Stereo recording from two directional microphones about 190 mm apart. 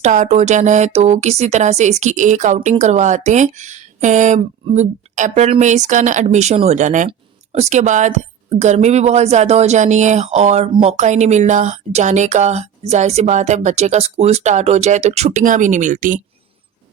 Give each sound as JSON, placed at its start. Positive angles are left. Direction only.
{"t": 0.0, "sound": "speech", "side_deg": -40}